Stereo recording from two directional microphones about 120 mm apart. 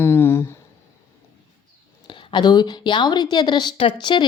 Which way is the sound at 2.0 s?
40° left (ahead or behind).